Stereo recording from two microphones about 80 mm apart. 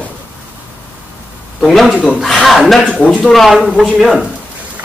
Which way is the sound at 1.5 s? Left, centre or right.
Centre.